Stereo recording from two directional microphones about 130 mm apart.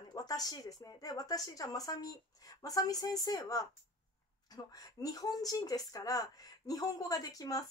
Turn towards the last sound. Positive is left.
turn(degrees=25)  # may be behind; listen again after turning